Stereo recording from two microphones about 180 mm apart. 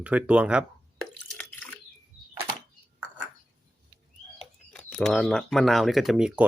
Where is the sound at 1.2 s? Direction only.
5° left (ahead or behind).